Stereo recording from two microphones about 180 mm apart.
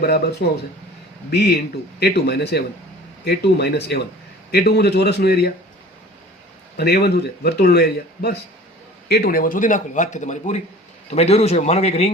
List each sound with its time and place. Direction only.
1.3 s a man's voice: 65° left (ahead or behind)
6.7 s a man's voice: 65° left (ahead or behind); by 12.1 s 35° left (ahead or behind)